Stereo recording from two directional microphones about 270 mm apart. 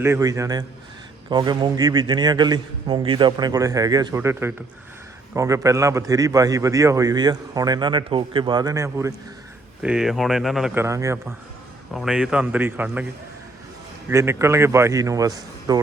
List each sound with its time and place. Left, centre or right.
0.0 s a man's voice: centre
14.1 s a man's voice: centre